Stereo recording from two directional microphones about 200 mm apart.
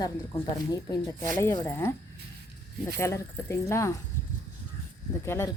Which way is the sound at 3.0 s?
15° left (ahead or behind).